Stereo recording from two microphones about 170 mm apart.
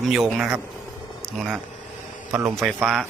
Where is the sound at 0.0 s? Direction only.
Centre (ahead or behind).